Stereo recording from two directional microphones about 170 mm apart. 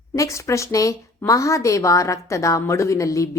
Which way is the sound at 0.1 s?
15° left (ahead or behind).